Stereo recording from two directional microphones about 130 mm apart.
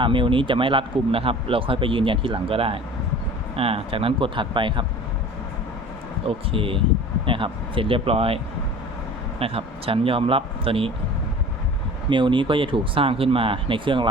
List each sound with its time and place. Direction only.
0.0 s speech: 40° right (ahead or behind)
6.2 s speech: 45° right (ahead or behind)
9.4 s speech: 45° right (ahead or behind)
12.0 s speech: 40° right (ahead or behind)